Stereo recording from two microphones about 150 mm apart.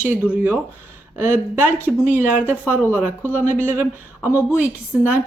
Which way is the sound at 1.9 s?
Centre (ahead or behind).